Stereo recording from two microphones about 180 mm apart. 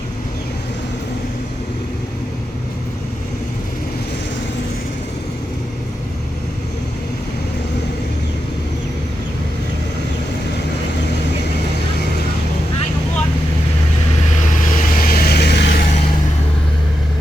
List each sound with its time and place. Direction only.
14.5 s vehicle: 50° left (ahead or behind)